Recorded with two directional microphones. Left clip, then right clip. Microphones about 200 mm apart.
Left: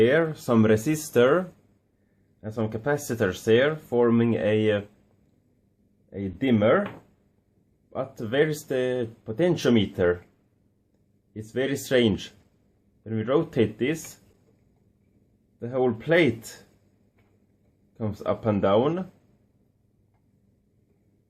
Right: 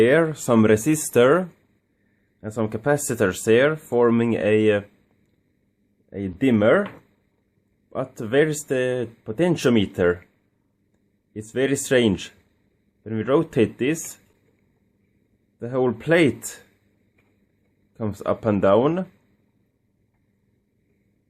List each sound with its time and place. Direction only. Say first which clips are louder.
0.0 s speech: right 4 dB; 45° right (ahead or behind)
6.1 s speech: right 4 dB; 45° right (ahead or behind)
7.9 s speech: right 4 dB; 40° right (ahead or behind)
11.3 s speech: right 5 dB; 40° right (ahead or behind)
15.5 s speech: right 2 dB; 45° right (ahead or behind)
17.9 s speech: right 3 dB; 45° right (ahead or behind)